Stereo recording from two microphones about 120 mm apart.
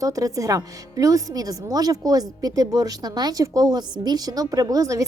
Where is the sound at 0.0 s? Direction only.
30° right (ahead or behind).